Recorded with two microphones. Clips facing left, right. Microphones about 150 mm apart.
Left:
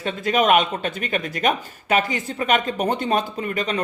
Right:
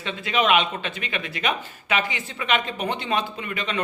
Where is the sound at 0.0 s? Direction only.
45° left (ahead or behind).